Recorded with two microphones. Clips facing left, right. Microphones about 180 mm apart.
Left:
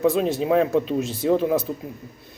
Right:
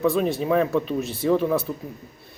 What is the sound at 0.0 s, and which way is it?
A man's voice, 15° left (ahead or behind).